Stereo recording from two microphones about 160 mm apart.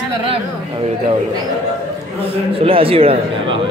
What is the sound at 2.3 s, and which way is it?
A man's voice, 35° right (ahead or behind).